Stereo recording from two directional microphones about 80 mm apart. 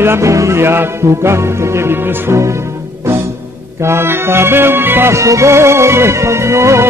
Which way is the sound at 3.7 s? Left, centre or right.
Right.